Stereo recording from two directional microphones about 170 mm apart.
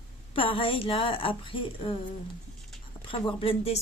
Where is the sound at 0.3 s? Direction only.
30° left (ahead or behind).